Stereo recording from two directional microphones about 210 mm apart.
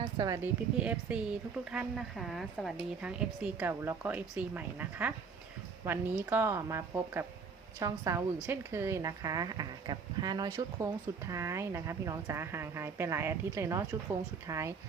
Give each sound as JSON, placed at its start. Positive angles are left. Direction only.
{"t": 0.0, "sound": "a woman's voice", "side_deg": -20}
{"t": 0.8, "sound": "a woman's voice", "side_deg": -5}